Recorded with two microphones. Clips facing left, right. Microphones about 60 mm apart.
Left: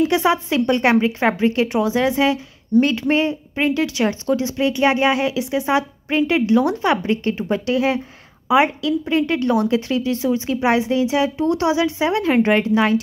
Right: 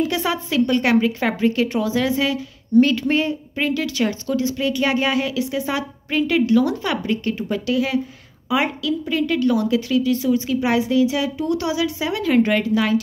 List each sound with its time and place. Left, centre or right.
0.1 s speech: left